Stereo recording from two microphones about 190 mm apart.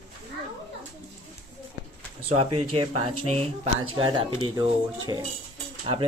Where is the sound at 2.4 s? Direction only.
30° right (ahead or behind).